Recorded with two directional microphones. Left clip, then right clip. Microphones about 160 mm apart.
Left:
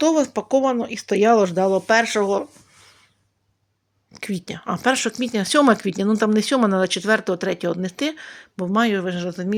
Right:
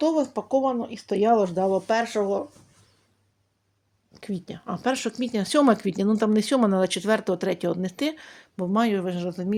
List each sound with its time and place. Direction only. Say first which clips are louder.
0.0 s speech: left 5 dB; 30° left (ahead or behind)
4.1 s speech: left 6 dB; 25° left (ahead or behind); by 9.6 s 10° left (ahead or behind)